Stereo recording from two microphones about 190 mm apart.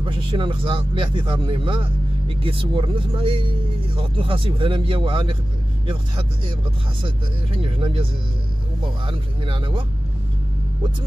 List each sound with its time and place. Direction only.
0.0 s speech: 25° right (ahead or behind)
7.6 s speech: 30° right (ahead or behind)
9.0 s speech: 25° right (ahead or behind)